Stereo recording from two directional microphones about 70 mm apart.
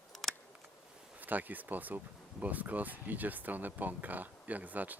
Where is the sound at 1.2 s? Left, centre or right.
Right.